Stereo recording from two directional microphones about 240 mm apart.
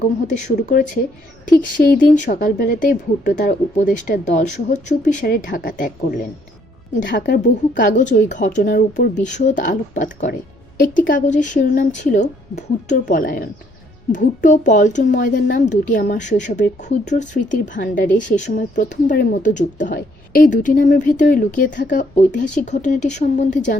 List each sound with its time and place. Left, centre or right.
0.6 s a woman's voice: left
7.4 s speech: left